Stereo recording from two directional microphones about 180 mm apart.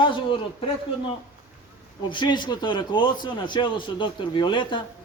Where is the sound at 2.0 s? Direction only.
25° left (ahead or behind).